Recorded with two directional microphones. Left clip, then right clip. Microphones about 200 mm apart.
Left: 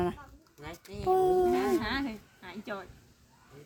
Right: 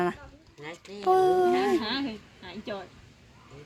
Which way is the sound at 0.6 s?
40° left (ahead or behind).